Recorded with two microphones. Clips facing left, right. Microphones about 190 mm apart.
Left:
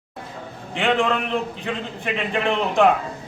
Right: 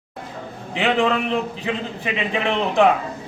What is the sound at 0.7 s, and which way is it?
A man's voice, centre (ahead or behind).